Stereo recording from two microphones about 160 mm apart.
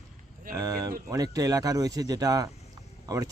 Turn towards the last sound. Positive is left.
turn(degrees=-20)  # may be behind; listen again after turning